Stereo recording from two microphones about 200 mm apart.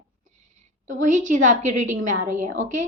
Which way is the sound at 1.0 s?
40° right (ahead or behind).